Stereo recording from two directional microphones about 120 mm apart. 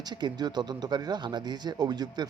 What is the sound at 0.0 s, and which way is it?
Speech, 35° right (ahead or behind).